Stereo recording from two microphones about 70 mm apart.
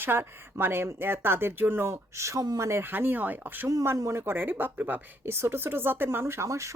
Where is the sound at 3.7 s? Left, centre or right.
Right.